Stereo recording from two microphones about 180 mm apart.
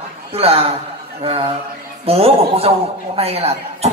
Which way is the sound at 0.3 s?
35° right (ahead or behind).